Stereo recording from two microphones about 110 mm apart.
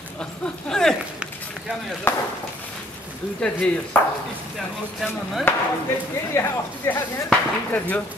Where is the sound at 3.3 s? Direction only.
10° left (ahead or behind).